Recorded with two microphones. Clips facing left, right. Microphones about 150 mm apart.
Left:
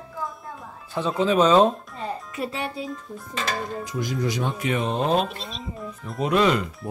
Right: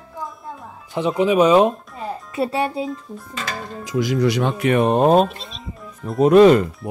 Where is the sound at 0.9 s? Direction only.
15° right (ahead or behind).